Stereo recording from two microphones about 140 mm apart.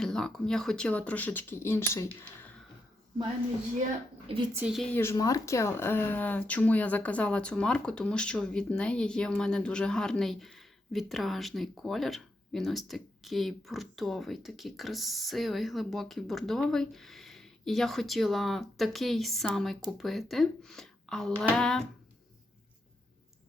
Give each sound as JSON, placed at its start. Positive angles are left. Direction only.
{"t": 0.0, "sound": "speech", "side_deg": 5}
{"t": 4.3, "sound": "speech", "side_deg": -45}
{"t": 4.7, "sound": "speech", "side_deg": 5}
{"t": 4.9, "sound": "speech", "side_deg": 20}